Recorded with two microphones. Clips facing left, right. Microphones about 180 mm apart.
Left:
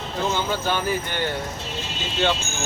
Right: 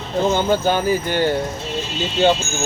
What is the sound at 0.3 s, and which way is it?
Speech, 45° right (ahead or behind).